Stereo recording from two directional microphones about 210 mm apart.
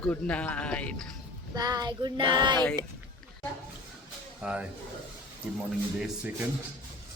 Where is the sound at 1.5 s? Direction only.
20° right (ahead or behind).